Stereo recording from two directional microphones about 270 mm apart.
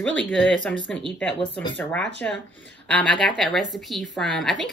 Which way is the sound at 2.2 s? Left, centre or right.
Centre.